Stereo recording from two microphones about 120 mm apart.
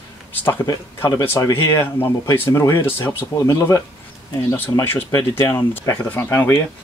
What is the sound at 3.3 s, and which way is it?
Speech, 30° left (ahead or behind).